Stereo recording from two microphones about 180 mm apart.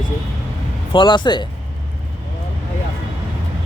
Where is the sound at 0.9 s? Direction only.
25° left (ahead or behind).